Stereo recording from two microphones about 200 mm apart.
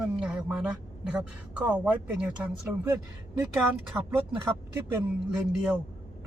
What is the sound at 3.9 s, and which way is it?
Speech, 10° right (ahead or behind).